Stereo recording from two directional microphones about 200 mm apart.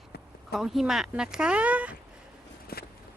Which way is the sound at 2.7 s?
50° left (ahead or behind).